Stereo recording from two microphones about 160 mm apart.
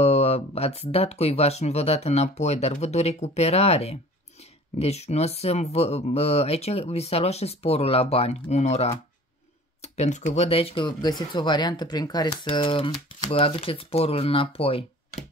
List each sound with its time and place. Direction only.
0.0 s speech: 40° left (ahead or behind)